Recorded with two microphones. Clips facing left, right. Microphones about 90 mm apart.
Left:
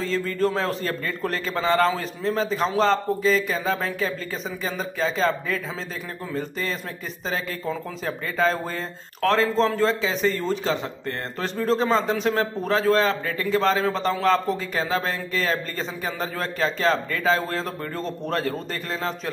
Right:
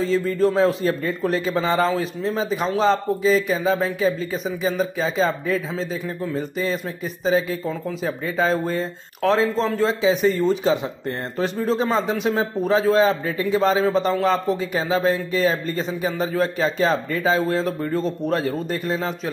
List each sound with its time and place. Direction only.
0.0 s a man's voice: 5° right (ahead or behind)
18.5 s a man's voice: 15° right (ahead or behind)